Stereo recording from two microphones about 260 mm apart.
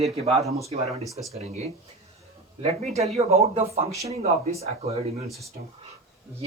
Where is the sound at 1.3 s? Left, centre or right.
Right.